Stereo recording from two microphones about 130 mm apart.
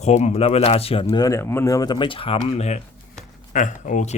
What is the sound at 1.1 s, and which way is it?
Speech, 25° left (ahead or behind).